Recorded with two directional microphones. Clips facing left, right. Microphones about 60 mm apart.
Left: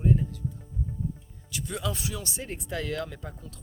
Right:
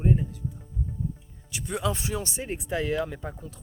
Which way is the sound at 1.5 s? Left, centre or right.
Right.